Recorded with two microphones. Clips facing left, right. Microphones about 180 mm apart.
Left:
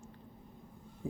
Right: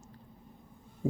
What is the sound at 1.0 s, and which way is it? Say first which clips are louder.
Heart sounds: right 8 dB; 35° right (ahead or behind).